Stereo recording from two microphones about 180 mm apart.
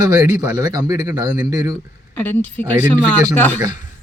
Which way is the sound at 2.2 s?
10° left (ahead or behind).